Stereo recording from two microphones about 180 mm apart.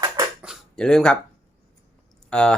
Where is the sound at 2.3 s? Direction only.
5° left (ahead or behind).